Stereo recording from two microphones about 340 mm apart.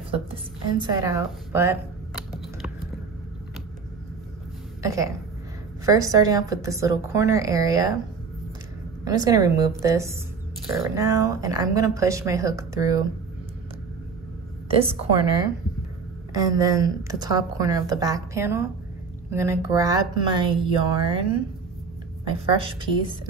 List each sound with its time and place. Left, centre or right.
0.1 s speech: centre
4.8 s speech: centre
9.0 s speech: centre
14.7 s speech: centre
22.2 s speech: centre